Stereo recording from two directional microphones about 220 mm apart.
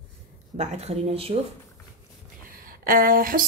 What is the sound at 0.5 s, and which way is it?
Speech, 30° right (ahead or behind).